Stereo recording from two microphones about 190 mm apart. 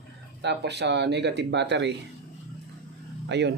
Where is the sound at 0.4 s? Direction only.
60° right (ahead or behind).